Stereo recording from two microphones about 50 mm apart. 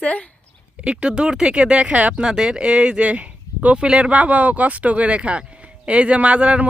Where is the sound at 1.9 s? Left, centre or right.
Right.